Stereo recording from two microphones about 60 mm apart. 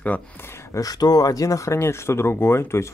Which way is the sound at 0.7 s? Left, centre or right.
Left.